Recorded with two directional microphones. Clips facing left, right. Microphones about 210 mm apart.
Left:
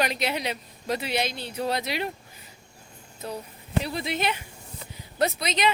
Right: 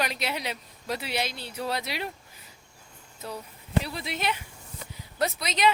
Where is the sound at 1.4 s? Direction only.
20° left (ahead or behind).